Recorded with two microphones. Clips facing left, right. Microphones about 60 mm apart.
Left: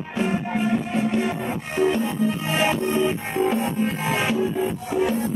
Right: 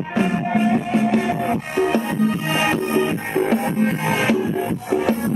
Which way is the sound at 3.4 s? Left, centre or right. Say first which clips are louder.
Right 2 dB; right.